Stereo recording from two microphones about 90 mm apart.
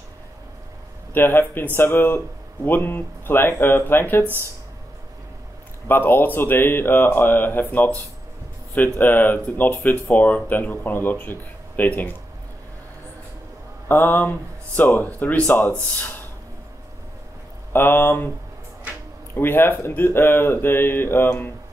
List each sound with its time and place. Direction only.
1.1 s speech: 25° left (ahead or behind)
5.9 s speech: 25° left (ahead or behind)
13.8 s speech: 25° left (ahead or behind)
17.7 s speech: 25° left (ahead or behind)
19.3 s speech: 25° left (ahead or behind)